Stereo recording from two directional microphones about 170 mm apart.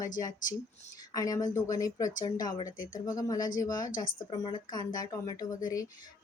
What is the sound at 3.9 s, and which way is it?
Speech, 55° left (ahead or behind).